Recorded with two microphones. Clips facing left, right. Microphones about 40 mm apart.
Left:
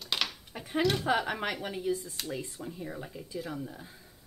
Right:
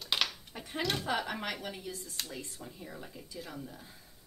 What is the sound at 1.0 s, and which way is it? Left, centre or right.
Speech, centre.